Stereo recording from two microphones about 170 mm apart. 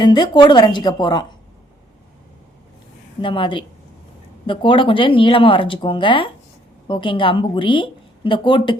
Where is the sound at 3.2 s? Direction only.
30° left (ahead or behind).